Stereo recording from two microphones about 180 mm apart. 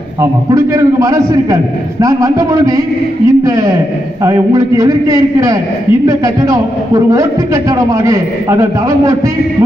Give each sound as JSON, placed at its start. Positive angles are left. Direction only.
{"t": 0.2, "sound": "a man's voice", "side_deg": -15}